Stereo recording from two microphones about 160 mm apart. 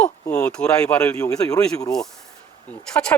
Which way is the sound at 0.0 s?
10° left (ahead or behind).